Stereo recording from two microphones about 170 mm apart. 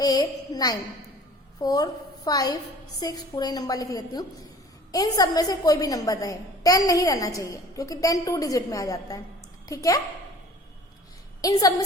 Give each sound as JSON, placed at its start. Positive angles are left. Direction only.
{"t": 0.0, "sound": "a woman's voice", "side_deg": 25}
{"t": 11.3, "sound": "a woman's voice", "side_deg": 20}